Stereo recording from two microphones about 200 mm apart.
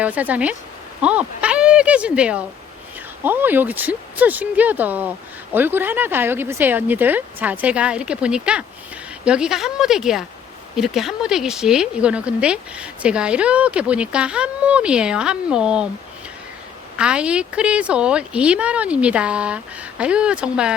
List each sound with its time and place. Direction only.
0.0 s a woman's voice: 10° right (ahead or behind)
17.0 s a woman's voice: 5° right (ahead or behind)